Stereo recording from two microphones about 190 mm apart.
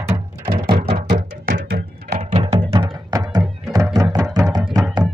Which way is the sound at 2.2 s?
30° right (ahead or behind).